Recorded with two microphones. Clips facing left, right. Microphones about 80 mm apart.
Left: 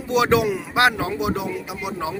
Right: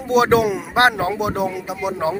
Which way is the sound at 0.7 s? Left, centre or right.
Right.